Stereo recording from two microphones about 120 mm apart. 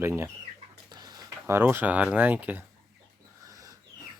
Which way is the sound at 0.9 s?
35° right (ahead or behind).